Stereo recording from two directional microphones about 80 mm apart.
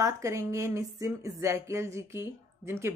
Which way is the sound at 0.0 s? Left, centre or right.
Right.